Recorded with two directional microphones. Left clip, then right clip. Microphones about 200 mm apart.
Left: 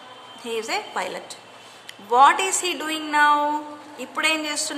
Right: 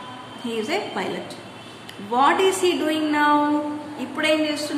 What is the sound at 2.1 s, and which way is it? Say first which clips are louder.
A woman's voice: left 2 dB; 40° left (ahead or behind).